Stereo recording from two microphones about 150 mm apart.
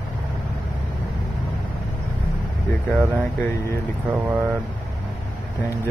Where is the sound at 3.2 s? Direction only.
20° left (ahead or behind).